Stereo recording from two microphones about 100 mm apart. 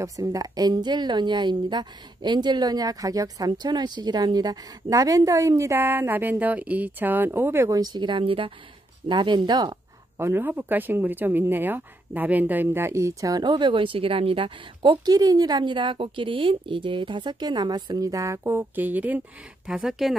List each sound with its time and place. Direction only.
0.0 s a woman's voice: 35° right (ahead or behind)
7.7 s speech: 45° right (ahead or behind)
10.1 s speech: 25° right (ahead or behind); by 15.0 s 60° right (ahead or behind)
15.0 s a woman's voice: 40° right (ahead or behind); by 20.2 s 5° right (ahead or behind)